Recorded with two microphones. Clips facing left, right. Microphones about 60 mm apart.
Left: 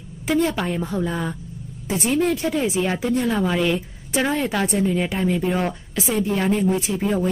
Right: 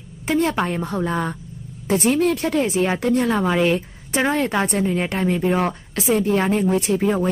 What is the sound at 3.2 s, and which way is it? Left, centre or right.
Speech, centre.